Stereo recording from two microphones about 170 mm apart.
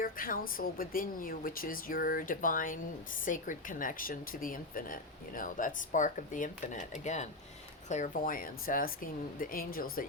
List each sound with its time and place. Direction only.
0.0 s a woman's voice: 55° left (ahead or behind)